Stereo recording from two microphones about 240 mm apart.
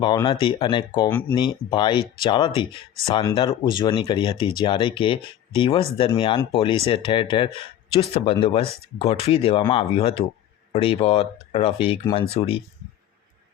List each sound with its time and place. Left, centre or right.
0.0 s speech: centre